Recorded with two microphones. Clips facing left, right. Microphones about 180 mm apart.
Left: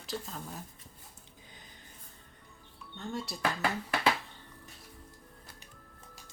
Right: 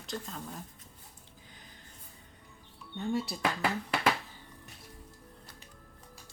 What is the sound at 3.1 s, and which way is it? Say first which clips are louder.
Speech: right 6 dB; 5° right (ahead or behind).